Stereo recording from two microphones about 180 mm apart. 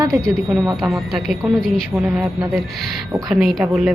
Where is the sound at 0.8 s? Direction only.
Centre (ahead or behind).